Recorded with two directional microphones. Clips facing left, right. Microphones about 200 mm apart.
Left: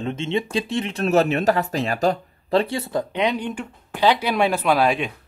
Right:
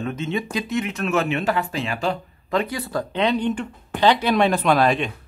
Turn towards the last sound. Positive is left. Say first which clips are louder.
# right 1 dB
turn(degrees=10)  # may be behind; listen again after turning